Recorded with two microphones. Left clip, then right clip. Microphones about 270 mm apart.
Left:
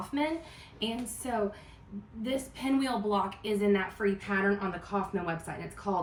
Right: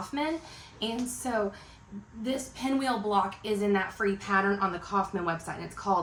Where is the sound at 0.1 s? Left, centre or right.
Centre.